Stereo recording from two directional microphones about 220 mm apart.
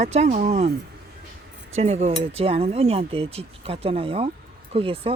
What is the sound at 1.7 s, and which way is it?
Speech, 30° right (ahead or behind).